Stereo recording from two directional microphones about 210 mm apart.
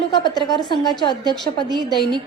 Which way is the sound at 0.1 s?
20° left (ahead or behind).